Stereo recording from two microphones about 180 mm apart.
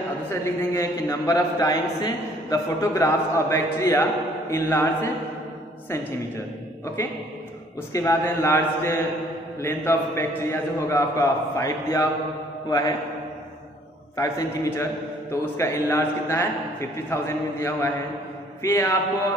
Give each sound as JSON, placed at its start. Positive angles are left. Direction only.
{"t": 0.3, "sound": "a man's voice", "side_deg": 15}
{"t": 7.9, "sound": "a man's voice", "side_deg": 15}
{"t": 14.1, "sound": "a man's voice", "side_deg": 15}